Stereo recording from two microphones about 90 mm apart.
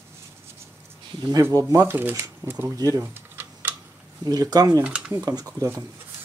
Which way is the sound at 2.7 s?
40° right (ahead or behind).